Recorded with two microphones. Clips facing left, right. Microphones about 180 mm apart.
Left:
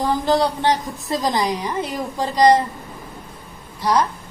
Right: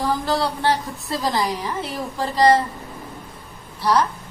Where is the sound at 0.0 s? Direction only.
20° left (ahead or behind).